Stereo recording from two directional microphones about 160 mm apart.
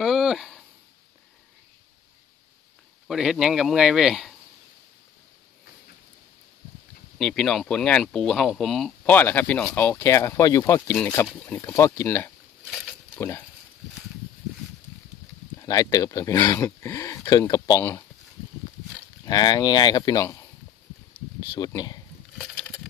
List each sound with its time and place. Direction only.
0.0 s a sound: centre (ahead or behind)
3.1 s speech: 5° right (ahead or behind)
7.2 s speech: 5° left (ahead or behind)
11.2 s speech: 5° left (ahead or behind)
11.5 s speech: 15° left (ahead or behind)
15.6 s speech: 20° left (ahead or behind)
19.2 s speech: 25° left (ahead or behind)
21.4 s speech: 25° left (ahead or behind)